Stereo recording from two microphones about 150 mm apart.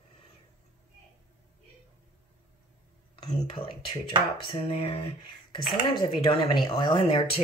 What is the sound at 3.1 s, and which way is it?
Speech, 35° left (ahead or behind).